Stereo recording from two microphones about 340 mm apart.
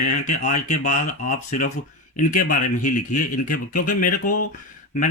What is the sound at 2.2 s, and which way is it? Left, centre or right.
Speech, left.